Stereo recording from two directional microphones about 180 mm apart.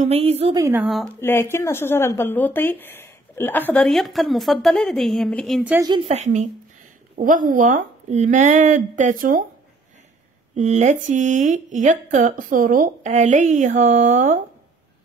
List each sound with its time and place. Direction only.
0.0 s a woman's voice: 35° right (ahead or behind)
0.6 s a woman's voice: 15° right (ahead or behind)
0.8 s speech: centre (ahead or behind)
1.2 s speech: 15° left (ahead or behind)
5.8 s a woman's voice: 20° right (ahead or behind)
6.0 s a woman's voice: 40° right (ahead or behind)
10.5 s speech: 40° right (ahead or behind)